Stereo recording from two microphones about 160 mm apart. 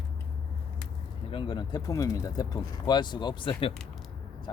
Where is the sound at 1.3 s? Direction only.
30° left (ahead or behind).